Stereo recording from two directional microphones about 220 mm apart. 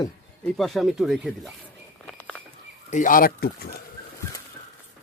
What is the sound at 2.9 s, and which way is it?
Speech, 35° left (ahead or behind).